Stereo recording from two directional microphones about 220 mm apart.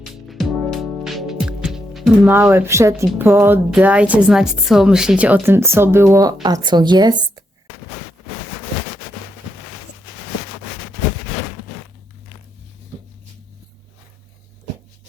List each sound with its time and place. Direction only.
0.3 s music: centre (ahead or behind)
6.4 s a woman's voice: 20° right (ahead or behind)